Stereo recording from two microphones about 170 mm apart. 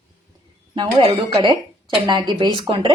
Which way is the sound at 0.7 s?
35° right (ahead or behind).